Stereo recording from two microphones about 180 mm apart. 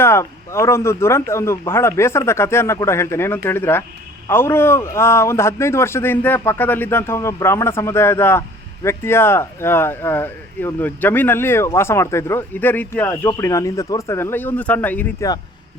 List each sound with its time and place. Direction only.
0.0 s a man's voice: 15° left (ahead or behind)